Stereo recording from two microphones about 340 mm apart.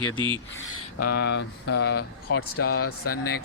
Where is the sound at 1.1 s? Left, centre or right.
Left.